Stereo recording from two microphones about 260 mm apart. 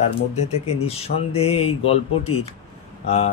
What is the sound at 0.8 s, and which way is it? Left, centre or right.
Speech, left.